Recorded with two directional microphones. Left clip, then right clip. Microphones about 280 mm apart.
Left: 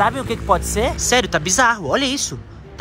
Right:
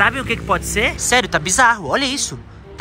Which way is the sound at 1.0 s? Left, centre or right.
Centre.